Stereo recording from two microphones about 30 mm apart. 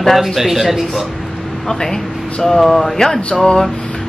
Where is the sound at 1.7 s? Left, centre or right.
Centre.